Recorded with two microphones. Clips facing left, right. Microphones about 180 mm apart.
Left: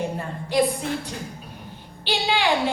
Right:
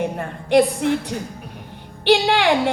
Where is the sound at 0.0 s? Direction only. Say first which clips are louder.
Right 3 dB; 65° right (ahead or behind).